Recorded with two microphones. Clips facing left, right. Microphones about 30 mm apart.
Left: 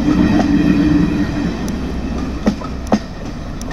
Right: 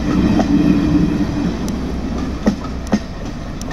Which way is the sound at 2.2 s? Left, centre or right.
Centre.